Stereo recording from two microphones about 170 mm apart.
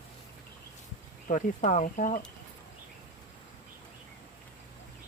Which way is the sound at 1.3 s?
45° left (ahead or behind).